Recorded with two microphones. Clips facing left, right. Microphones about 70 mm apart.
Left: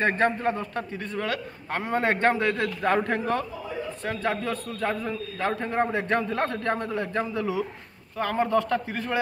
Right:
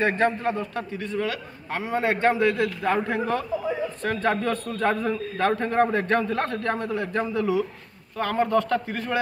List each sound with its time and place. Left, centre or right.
0.0 s a man's voice: left
4.0 s a man's voice: centre
5.6 s a man's voice: centre